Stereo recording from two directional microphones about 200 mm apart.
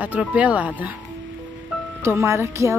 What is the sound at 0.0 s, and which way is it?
Music, 5° right (ahead or behind).